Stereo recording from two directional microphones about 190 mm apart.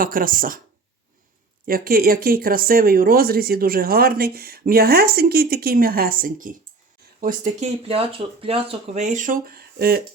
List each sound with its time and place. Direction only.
0.0 s speech: 50° right (ahead or behind)
1.6 s speech: 50° right (ahead or behind)
7.9 s speech: 30° right (ahead or behind); by 10.0 s 55° right (ahead or behind)